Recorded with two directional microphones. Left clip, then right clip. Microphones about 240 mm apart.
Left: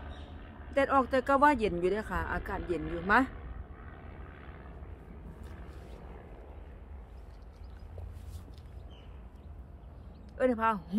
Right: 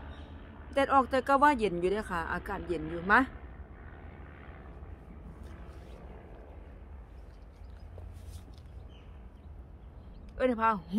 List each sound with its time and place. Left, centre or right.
0.7 s speech: centre
3.9 s vehicle: left
10.3 s speech: centre